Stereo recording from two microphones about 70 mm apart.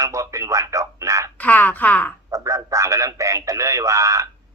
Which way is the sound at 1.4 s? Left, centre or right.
Left.